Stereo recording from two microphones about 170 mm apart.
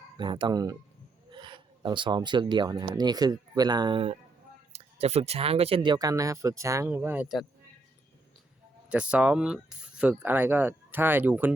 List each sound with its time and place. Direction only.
0.2 s speech: 30° right (ahead or behind); by 7.3 s 10° right (ahead or behind)
8.9 s speech: 5° right (ahead or behind)